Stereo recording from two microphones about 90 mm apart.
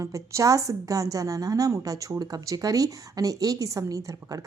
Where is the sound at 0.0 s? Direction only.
35° right (ahead or behind).